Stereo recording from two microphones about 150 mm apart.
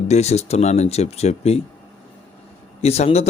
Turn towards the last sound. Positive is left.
turn(degrees=45)  # may be behind; listen again after turning